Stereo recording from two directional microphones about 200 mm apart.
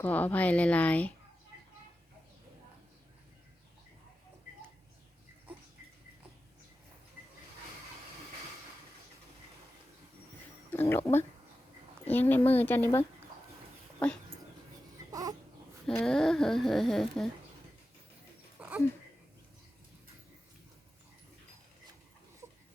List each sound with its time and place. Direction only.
0.0 s a woman's voice: 10° left (ahead or behind)
10.7 s a woman's voice: 10° left (ahead or behind)
15.1 s baby cry: 20° right (ahead or behind)
15.9 s speech: 5° left (ahead or behind)
18.6 s a sound: 5° right (ahead or behind)